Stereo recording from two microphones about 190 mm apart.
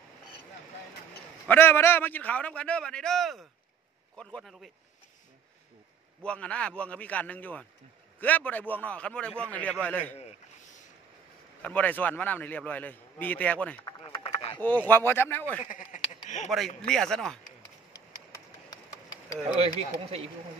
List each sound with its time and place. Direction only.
1.5 s a man's voice: 10° left (ahead or behind)
6.2 s a man's voice: 5° left (ahead or behind)
11.6 s a man's voice: 10° left (ahead or behind)
14.0 s a sound: 30° left (ahead or behind)
14.9 s a man's voice: 10° left (ahead or behind)
15.6 s a sound: 40° left (ahead or behind)
16.4 s speech: centre (ahead or behind)
18.3 s a sound: 20° left (ahead or behind)
19.6 s speech: 30° right (ahead or behind)